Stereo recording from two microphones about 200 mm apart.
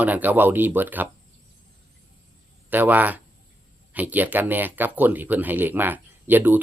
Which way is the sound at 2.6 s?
10° right (ahead or behind).